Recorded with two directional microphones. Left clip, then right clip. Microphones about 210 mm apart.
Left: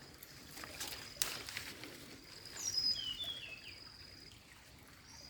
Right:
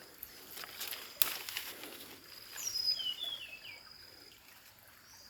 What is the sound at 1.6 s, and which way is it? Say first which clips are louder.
Pigeon: right 3 dB; 25° right (ahead or behind).